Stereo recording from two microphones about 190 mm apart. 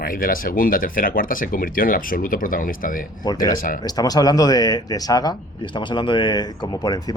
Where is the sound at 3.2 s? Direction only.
20° left (ahead or behind).